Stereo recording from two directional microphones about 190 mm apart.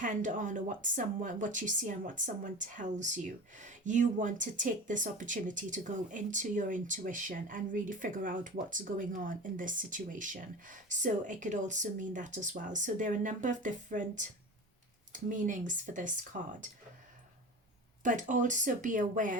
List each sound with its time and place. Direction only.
0.0 s a woman's voice: 40° right (ahead or behind)
18.0 s speech: 40° right (ahead or behind)